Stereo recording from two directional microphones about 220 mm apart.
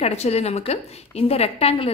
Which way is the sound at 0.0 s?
30° left (ahead or behind).